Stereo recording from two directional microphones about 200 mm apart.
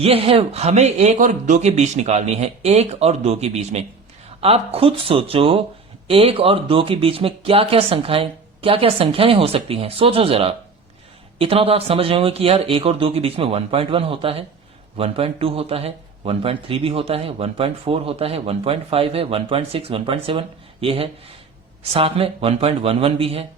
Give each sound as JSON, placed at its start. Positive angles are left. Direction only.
{"t": 0.0, "sound": "a man's voice", "side_deg": -30}